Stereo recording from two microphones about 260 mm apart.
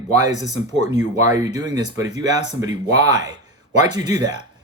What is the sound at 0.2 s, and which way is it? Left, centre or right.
Speech, centre.